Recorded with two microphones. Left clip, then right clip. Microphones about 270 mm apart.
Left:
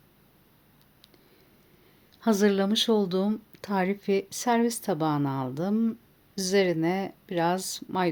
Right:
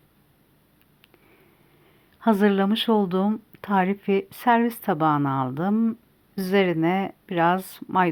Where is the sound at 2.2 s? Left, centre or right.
Centre.